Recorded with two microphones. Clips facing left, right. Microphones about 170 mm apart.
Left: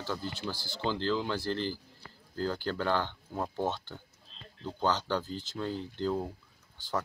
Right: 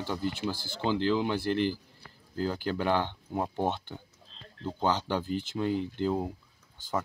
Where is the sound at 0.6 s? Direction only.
50° right (ahead or behind).